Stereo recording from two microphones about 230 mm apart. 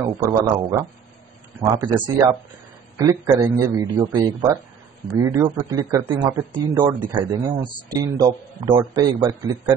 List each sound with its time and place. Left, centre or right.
0.0 s a man's voice: centre